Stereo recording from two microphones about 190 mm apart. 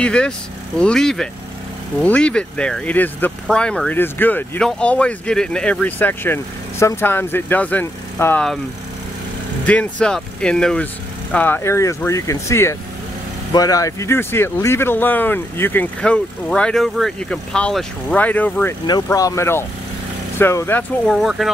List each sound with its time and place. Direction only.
0.0 s speech: 5° left (ahead or behind)
9.7 s speech: 5° left (ahead or behind)
18.9 s speech: 20° left (ahead or behind); by 21.5 s centre (ahead or behind)